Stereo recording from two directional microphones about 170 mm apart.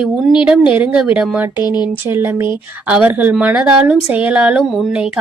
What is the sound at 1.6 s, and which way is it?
Speech, 25° left (ahead or behind).